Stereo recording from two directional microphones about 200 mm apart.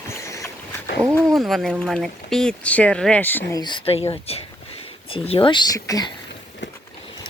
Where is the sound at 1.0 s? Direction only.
15° right (ahead or behind).